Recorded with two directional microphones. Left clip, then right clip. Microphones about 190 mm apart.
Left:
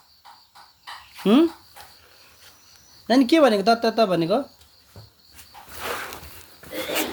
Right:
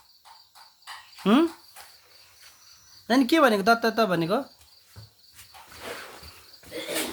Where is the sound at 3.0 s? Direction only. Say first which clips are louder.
Left 3 dB; 10° right (ahead or behind).